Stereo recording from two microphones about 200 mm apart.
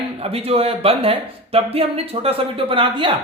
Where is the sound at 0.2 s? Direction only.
30° right (ahead or behind).